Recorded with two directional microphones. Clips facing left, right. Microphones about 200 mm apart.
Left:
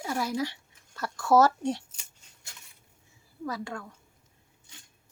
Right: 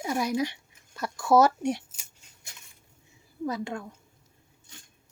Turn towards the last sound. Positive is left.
turn(degrees=-20)  # may be behind; listen again after turning